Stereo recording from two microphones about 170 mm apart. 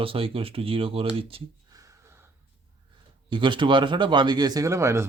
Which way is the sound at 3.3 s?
30° right (ahead or behind).